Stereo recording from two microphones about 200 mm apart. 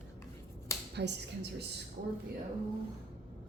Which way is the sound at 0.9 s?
60° right (ahead or behind).